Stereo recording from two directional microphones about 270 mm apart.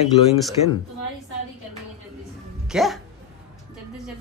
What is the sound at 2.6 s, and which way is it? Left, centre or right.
Speech, centre.